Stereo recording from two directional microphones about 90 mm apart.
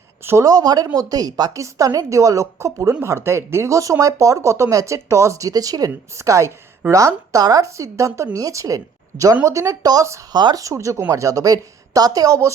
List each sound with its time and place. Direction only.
0.2 s a woman's voice: 25° right (ahead or behind)
0.4 s a woman's voice: 45° right (ahead or behind)
10.3 s speech: 55° right (ahead or behind)
10.6 s a woman's voice: 35° right (ahead or behind)